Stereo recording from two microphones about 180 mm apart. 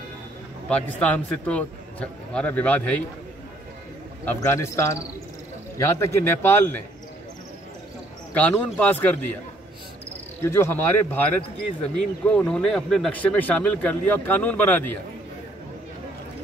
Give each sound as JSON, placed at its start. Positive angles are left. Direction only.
{"t": 0.7, "sound": "a man's voice", "side_deg": 5}
{"t": 4.3, "sound": "a man's voice", "side_deg": 15}
{"t": 8.3, "sound": "a man's voice", "side_deg": 10}
{"t": 10.4, "sound": "a man's voice", "side_deg": 15}
{"t": 12.3, "sound": "a man's voice", "side_deg": 5}